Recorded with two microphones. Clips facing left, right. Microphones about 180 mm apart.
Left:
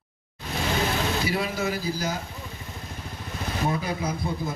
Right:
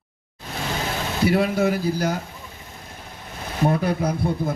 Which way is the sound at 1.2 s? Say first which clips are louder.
Right 8 dB; 60° right (ahead or behind).